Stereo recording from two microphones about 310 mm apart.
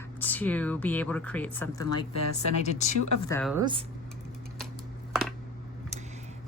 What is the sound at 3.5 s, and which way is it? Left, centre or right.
Speech, centre.